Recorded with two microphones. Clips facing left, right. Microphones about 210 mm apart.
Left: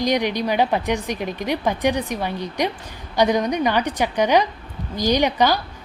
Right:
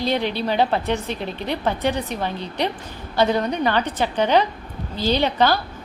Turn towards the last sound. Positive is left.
turn(degrees=15)  # may be behind; listen again after turning